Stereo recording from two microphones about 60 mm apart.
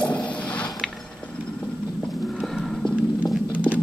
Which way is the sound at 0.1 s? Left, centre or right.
Left.